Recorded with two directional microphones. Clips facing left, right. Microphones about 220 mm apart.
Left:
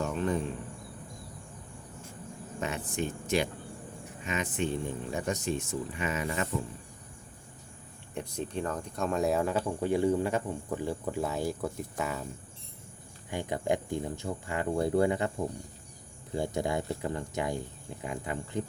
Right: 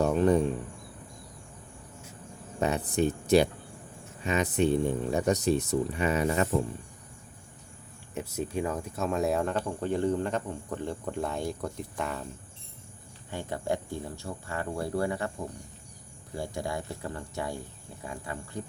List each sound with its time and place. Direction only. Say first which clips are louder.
0.0 s cricket: right 7 dB; 40° right (ahead or behind)
2.6 s speech: right 7 dB; 35° right (ahead or behind)
8.1 s speech: right 3 dB; 5° right (ahead or behind)
13.3 s speech: left 2 dB; 15° left (ahead or behind)
16.3 s speech: left 3 dB; 20° left (ahead or behind)